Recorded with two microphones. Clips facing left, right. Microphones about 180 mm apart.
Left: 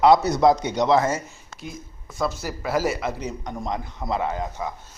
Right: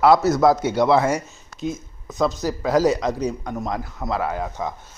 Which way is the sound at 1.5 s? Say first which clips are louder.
Right 11 dB; 25° left (ahead or behind).